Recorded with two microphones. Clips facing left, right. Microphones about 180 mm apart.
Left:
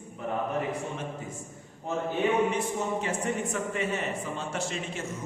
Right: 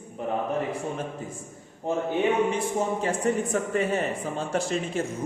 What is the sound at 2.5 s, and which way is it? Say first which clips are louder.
Speech: right 3 dB; 35° right (ahead or behind).